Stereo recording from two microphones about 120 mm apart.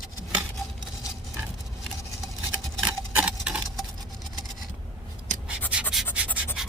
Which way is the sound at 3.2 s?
10° right (ahead or behind).